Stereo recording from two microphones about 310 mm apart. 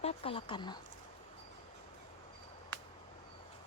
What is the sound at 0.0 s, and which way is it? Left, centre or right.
Speech, centre.